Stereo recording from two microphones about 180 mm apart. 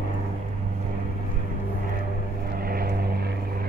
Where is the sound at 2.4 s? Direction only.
55° right (ahead or behind).